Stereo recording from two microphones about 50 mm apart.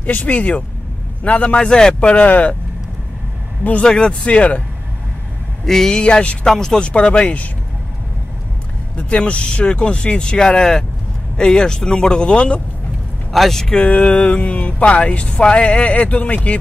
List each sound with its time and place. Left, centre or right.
0.0 s speech: left
3.8 s speech: centre
5.7 s speech: centre
6.4 s speech: centre
6.9 s speech: left
8.9 s speech: left
13.3 s speech: centre
13.7 s speech: left